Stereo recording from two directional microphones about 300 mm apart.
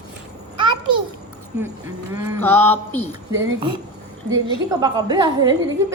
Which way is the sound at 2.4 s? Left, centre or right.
Centre.